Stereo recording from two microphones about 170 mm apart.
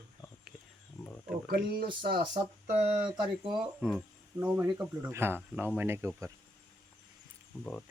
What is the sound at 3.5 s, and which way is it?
Speech, centre (ahead or behind).